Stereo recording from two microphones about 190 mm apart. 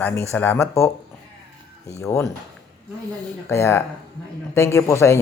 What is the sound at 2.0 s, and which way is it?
Speech, 15° left (ahead or behind).